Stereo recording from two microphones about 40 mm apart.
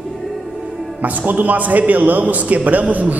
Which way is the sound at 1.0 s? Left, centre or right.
Right.